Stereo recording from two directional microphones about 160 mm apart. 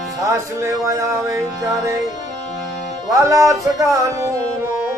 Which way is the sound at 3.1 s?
20° right (ahead or behind).